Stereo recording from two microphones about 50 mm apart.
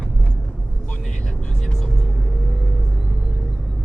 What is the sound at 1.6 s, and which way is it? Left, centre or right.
Vehicle, centre.